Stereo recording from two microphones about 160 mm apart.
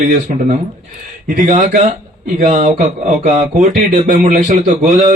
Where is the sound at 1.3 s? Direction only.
50° right (ahead or behind).